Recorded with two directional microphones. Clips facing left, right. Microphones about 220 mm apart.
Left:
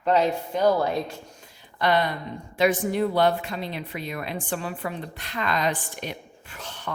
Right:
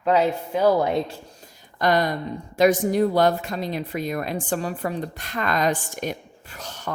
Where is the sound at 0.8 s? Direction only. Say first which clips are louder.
Right 3 dB; 20° right (ahead or behind).